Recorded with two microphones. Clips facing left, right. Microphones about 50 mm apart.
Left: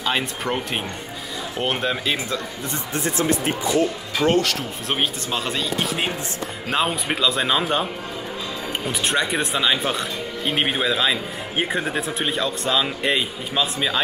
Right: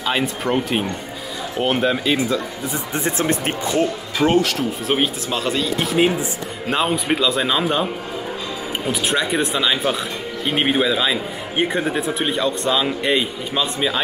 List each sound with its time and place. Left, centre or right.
0.0 s a man's voice: centre
2.9 s speech: right
3.3 s speech: right
4.2 s a man's voice: centre